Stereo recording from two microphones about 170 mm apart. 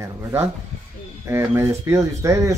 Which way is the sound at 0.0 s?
15° right (ahead or behind).